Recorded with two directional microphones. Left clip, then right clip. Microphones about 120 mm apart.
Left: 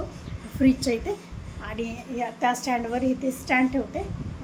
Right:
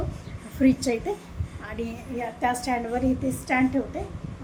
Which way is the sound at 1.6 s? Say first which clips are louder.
Left 1 dB; 30° left (ahead or behind).